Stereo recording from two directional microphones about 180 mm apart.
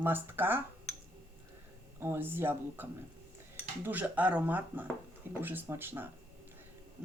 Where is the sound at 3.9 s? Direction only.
10° right (ahead or behind).